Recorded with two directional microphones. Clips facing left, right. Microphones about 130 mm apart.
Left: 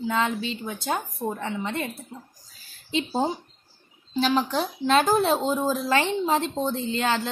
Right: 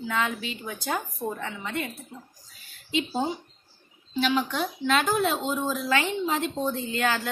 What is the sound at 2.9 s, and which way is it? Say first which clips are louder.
Speech: left 2 dB; 35° left (ahead or behind).